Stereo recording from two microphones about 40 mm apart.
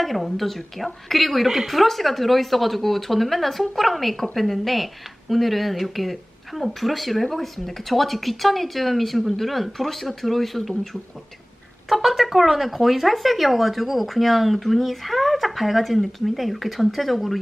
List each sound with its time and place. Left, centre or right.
0.0 s speech: centre
11.9 s speech: centre